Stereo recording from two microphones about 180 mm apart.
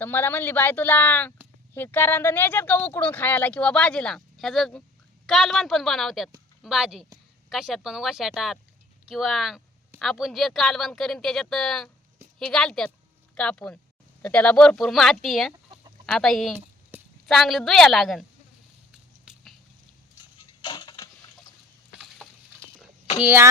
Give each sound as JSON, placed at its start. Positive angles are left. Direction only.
{"t": 0.0, "sound": "speech", "side_deg": 10}
{"t": 18.9, "sound": "a sound", "side_deg": -5}
{"t": 20.6, "sound": "crushing", "side_deg": 25}
{"t": 23.2, "sound": "speech", "side_deg": -10}